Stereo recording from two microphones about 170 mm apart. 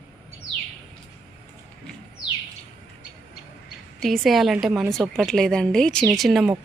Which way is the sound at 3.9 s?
Centre (ahead or behind).